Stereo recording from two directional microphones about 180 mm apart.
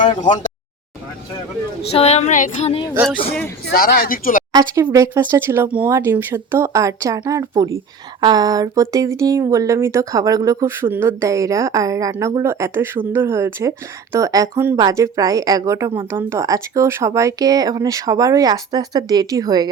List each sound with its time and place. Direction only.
0.2 s speech: 45° left (ahead or behind)
1.9 s speech: 35° left (ahead or behind)
3.7 s speech: 55° left (ahead or behind)
4.7 s speech: 15° right (ahead or behind)